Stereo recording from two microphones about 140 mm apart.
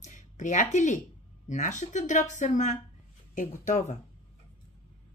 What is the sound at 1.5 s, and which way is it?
Speech, 60° left (ahead or behind).